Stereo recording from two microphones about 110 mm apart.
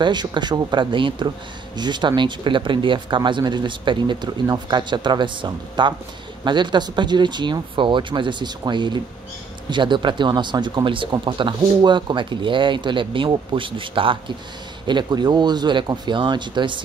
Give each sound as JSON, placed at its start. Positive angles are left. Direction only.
{"t": 0.0, "sound": "speech", "side_deg": -45}